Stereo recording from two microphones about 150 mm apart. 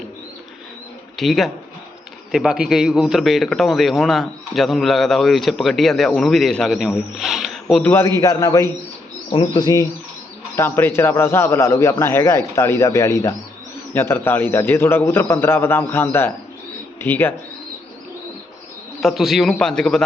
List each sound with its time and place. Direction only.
1.1 s a man's voice: centre (ahead or behind)
7.8 s a man's voice: 15° left (ahead or behind)
10.6 s a man's voice: 15° left (ahead or behind)
18.9 s a man's voice: centre (ahead or behind)